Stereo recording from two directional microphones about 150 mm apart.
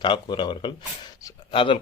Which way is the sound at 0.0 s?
30° left (ahead or behind).